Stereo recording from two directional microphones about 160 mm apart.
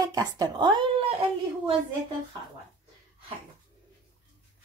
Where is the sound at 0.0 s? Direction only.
25° right (ahead or behind).